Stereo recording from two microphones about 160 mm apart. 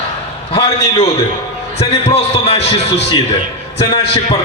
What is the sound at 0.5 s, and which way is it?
A man's voice, 35° left (ahead or behind).